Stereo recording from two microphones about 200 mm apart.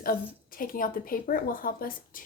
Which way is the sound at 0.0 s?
45° left (ahead or behind).